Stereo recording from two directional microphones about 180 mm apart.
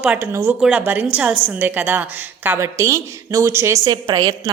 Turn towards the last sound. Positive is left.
turn(degrees=-20)  # may be behind; listen again after turning